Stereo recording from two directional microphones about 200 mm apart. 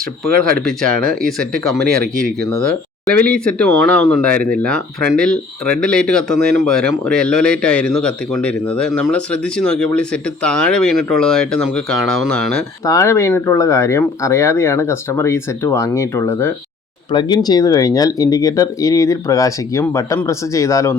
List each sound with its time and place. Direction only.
0.4 s speech: 5° left (ahead or behind)
12.8 s speech: 15° left (ahead or behind)